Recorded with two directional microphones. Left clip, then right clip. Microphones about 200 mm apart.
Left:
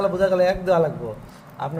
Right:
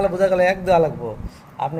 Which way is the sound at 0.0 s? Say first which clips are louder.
Right 2 dB; 15° right (ahead or behind).